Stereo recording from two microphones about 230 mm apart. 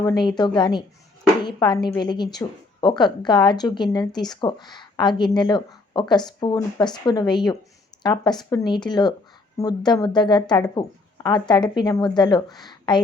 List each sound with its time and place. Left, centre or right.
0.0 s a woman's voice: centre